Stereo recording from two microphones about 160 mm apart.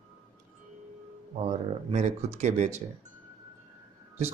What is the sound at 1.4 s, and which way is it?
A man's voice, 45° right (ahead or behind).